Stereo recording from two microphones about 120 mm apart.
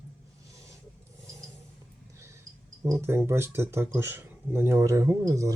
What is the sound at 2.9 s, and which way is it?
Speech, 20° right (ahead or behind).